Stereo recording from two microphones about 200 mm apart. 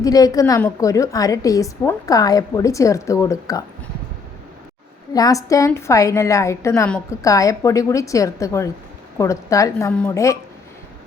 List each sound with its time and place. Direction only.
0.0 s a woman's voice: 15° left (ahead or behind)
5.1 s a woman's voice: 15° left (ahead or behind)